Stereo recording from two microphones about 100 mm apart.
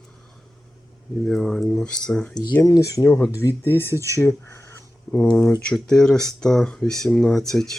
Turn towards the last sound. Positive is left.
turn(degrees=5)  # may be behind; listen again after turning